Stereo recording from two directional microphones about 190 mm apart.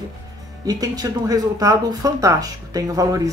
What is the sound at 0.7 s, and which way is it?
Speech, 20° right (ahead or behind).